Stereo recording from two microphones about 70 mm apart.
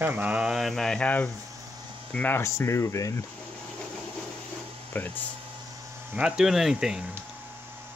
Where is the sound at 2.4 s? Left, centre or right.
Left.